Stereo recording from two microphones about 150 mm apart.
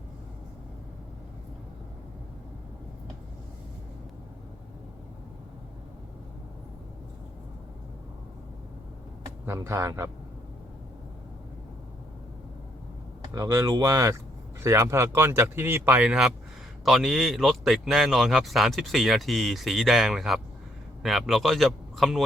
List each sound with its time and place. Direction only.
9.2 s speech: 20° right (ahead or behind)
13.3 s a man's voice: 20° right (ahead or behind); by 22.2 s centre (ahead or behind)